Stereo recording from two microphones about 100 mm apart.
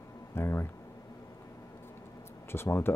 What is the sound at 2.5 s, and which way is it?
Speech, 25° left (ahead or behind).